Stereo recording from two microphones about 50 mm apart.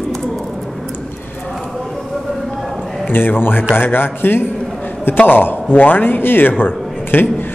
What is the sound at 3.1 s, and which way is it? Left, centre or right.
A man's voice, left.